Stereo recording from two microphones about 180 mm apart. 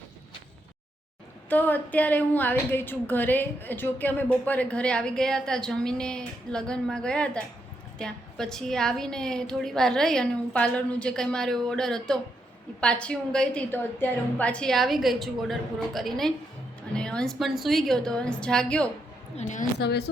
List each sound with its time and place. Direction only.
1.5 s a woman's voice: 10° left (ahead or behind)
19.4 s a woman's voice: 40° left (ahead or behind)
19.8 s speech: 65° left (ahead or behind)